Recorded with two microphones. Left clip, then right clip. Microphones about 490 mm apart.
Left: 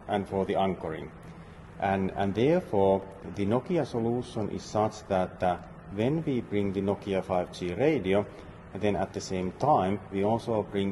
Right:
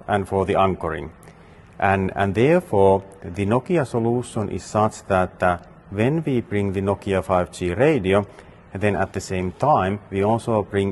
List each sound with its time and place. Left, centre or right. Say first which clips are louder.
0.1 s speech: right 8 dB; right